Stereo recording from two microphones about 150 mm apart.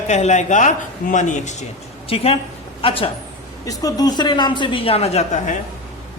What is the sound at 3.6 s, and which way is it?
A woman's voice, 25° left (ahead or behind).